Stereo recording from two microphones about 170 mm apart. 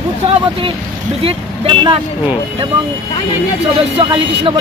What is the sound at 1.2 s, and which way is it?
Speech, 35° right (ahead or behind).